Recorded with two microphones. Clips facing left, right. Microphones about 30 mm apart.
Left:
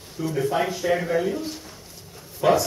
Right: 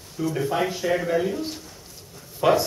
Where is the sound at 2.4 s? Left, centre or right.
Centre.